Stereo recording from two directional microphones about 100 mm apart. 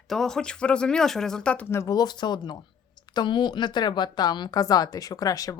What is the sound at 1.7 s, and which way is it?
Speech, 30° left (ahead or behind).